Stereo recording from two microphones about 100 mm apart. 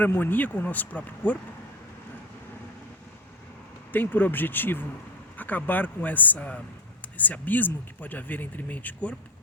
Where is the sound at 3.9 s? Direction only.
20° left (ahead or behind).